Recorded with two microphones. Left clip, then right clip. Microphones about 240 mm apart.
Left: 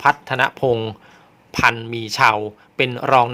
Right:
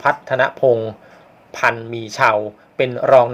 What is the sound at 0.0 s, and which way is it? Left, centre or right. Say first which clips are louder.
Speech: even; left.